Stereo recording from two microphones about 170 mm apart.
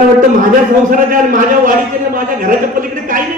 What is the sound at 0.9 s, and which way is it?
Speech, 50° right (ahead or behind).